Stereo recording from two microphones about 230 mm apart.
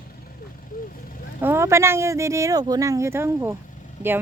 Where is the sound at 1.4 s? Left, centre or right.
Centre.